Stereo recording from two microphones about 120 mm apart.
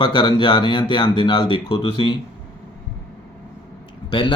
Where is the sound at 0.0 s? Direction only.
40° left (ahead or behind).